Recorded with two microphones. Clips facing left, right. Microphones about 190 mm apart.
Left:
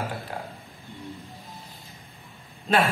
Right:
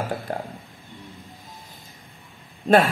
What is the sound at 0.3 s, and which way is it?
Speech, 45° right (ahead or behind).